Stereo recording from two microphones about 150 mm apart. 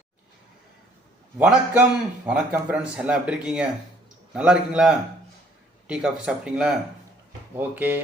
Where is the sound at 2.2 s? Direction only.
10° right (ahead or behind).